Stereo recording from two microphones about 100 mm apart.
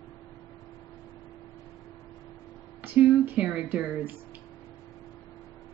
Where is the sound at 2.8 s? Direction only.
20° right (ahead or behind).